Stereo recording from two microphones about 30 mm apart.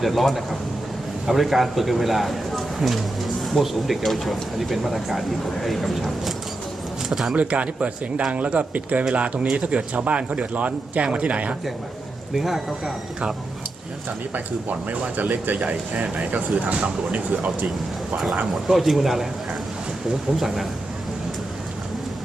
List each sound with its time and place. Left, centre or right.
0.0 s a man's voice: centre
7.3 s speech: right
12.3 s a man's voice: centre
14.8 s speech: right
15.6 s speech: right
18.8 s a man's voice: centre